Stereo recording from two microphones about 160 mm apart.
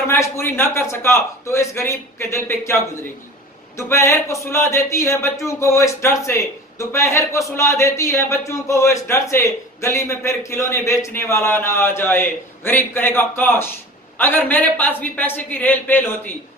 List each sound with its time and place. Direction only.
0.0 s a man's voice: 15° left (ahead or behind)